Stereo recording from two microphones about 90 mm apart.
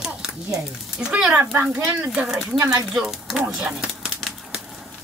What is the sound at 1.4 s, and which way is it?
Speech, 25° right (ahead or behind).